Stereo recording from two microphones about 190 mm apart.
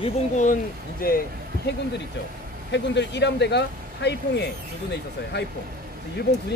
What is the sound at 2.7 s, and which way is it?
Speech, 65° left (ahead or behind).